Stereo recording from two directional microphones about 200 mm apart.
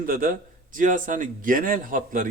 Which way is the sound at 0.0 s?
45° right (ahead or behind).